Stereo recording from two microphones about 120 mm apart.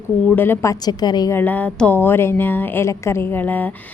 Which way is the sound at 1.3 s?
15° left (ahead or behind).